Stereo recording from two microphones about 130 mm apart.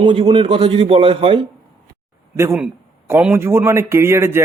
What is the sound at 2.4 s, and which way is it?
Speech, 20° right (ahead or behind).